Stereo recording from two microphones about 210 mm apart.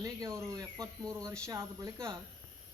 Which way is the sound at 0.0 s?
15° right (ahead or behind).